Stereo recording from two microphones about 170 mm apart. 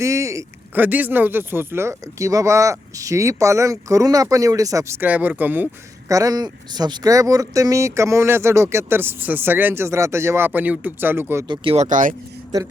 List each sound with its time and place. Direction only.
0.0 s speech: 15° right (ahead or behind)
6.1 s speech: 20° right (ahead or behind)
11.4 s speech: 30° right (ahead or behind)
11.9 s speech: 50° right (ahead or behind)